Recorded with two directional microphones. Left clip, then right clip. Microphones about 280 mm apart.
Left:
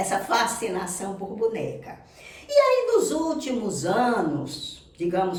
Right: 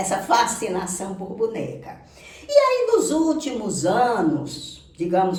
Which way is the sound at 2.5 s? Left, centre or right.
Centre.